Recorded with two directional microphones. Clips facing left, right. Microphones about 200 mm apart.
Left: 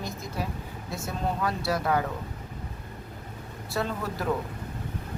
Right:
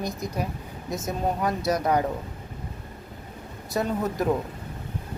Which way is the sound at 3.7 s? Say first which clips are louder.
Right 4 dB; 20° right (ahead or behind).